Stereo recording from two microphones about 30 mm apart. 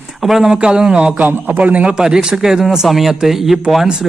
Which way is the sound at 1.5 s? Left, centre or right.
Right.